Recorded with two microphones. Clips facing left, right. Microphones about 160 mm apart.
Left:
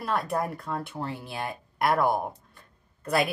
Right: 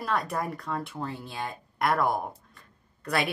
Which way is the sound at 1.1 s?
15° left (ahead or behind).